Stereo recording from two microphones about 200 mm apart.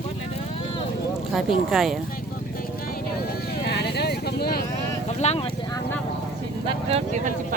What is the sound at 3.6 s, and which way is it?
Vehicle, 55° left (ahead or behind).